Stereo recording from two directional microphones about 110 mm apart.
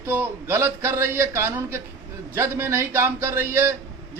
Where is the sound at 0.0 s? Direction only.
20° right (ahead or behind).